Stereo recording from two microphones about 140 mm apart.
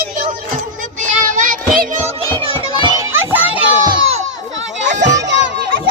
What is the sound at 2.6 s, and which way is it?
Children playing, 30° right (ahead or behind).